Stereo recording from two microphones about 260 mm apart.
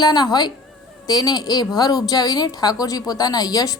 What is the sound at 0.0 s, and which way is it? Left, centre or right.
A woman's voice, centre.